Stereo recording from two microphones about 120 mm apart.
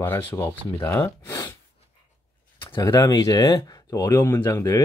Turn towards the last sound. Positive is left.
turn(degrees=25)  # may be behind; listen again after turning